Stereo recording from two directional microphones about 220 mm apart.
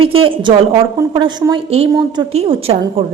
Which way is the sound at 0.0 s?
25° right (ahead or behind).